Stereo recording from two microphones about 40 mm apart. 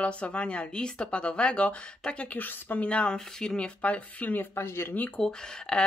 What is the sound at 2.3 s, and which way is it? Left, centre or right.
Speech, left.